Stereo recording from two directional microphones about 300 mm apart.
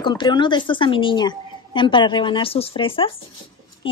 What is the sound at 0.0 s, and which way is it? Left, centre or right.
A woman's voice, centre.